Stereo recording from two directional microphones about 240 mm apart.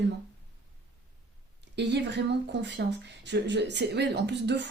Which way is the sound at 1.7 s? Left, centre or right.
Right.